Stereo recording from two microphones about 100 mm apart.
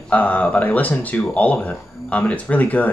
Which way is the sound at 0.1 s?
15° left (ahead or behind).